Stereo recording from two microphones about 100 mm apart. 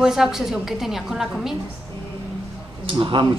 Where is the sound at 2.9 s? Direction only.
55° right (ahead or behind).